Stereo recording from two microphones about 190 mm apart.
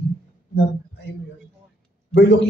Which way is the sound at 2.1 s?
70° left (ahead or behind).